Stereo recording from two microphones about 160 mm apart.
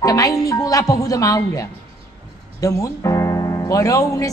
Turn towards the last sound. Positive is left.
turn(degrees=20)  # may be behind; listen again after turning